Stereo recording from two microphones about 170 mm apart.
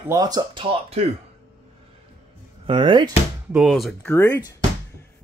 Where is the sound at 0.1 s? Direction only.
20° right (ahead or behind).